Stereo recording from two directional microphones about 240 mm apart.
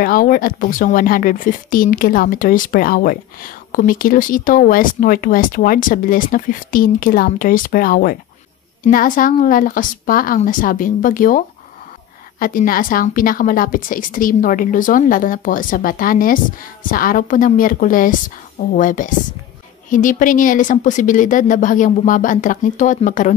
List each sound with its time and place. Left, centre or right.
0.0 s speech: left